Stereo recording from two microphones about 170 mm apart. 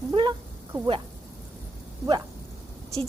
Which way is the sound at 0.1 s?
25° right (ahead or behind).